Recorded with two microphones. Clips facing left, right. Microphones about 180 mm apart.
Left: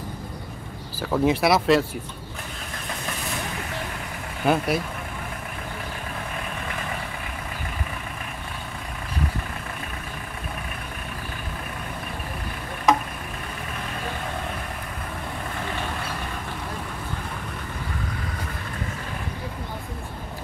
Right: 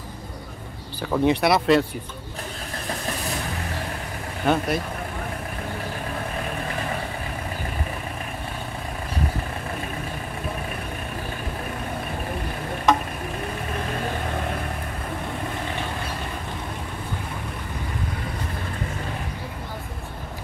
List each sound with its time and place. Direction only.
0.9 s speech: centre (ahead or behind)
4.5 s speech: 5° left (ahead or behind)